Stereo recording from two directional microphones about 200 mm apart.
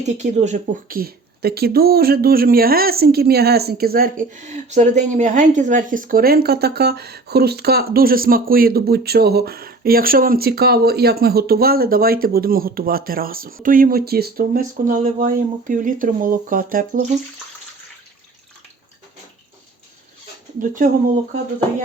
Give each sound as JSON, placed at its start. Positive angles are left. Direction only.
{"t": 0.0, "sound": "speech", "side_deg": -35}
{"t": 20.6, "sound": "speech", "side_deg": -45}